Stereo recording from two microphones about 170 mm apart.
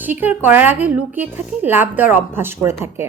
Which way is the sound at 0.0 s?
10° right (ahead or behind).